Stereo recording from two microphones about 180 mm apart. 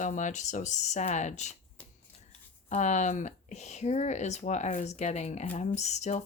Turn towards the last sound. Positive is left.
turn(degrees=40)  # may be behind; listen again after turning